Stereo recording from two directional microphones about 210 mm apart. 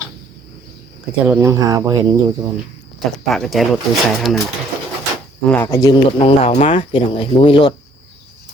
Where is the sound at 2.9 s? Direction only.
Centre (ahead or behind).